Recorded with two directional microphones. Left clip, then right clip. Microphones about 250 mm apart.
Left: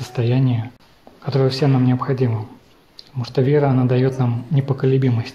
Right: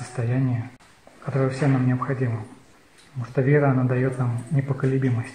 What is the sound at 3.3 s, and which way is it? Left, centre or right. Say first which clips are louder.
Speech: left 4 dB; left.